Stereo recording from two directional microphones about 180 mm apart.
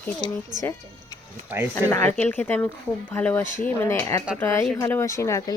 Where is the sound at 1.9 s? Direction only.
10° left (ahead or behind).